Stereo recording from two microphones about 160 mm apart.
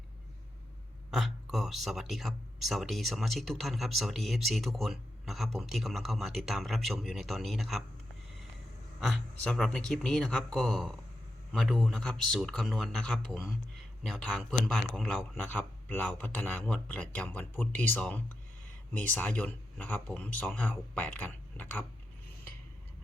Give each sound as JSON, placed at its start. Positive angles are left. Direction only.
{"t": 1.1, "sound": "speech", "side_deg": 0}
{"t": 9.0, "sound": "speech", "side_deg": 0}